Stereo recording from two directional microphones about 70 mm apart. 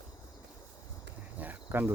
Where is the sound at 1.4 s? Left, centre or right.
Right.